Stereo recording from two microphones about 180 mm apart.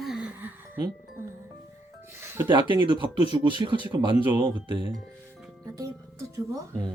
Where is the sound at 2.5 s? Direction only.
25° right (ahead or behind).